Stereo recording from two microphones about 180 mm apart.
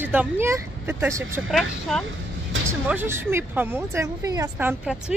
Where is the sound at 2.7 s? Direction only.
10° right (ahead or behind).